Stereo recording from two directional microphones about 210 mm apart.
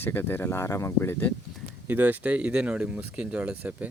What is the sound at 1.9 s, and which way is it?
Speech, 10° right (ahead or behind).